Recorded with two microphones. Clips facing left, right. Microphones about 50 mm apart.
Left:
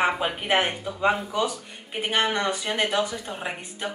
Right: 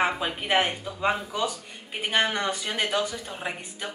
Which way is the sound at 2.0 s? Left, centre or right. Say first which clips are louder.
Left 1 dB; centre.